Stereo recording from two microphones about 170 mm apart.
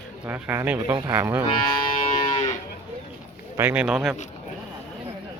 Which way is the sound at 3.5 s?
10° right (ahead or behind).